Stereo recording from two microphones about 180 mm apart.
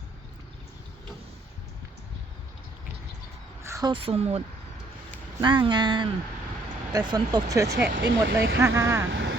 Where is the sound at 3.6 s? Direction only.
15° right (ahead or behind).